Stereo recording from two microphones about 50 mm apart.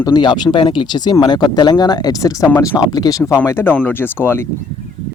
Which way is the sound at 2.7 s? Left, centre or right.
Left.